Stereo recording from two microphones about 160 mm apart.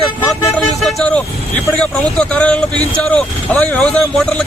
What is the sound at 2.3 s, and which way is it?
Speech, 5° left (ahead or behind).